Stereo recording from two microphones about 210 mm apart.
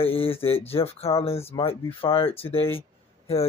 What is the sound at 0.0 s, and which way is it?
Speech, 25° left (ahead or behind).